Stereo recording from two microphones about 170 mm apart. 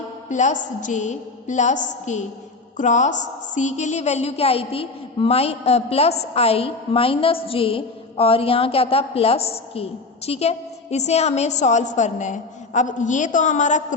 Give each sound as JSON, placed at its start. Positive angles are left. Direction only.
{"t": 0.3, "sound": "a woman's voice", "side_deg": 45}